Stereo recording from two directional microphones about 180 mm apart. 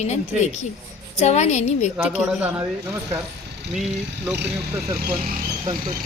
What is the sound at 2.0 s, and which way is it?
Speech, 5° right (ahead or behind).